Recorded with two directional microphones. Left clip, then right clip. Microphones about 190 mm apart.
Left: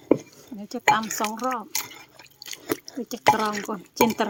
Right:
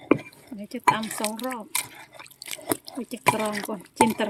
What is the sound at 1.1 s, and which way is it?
Drip, 5° right (ahead or behind).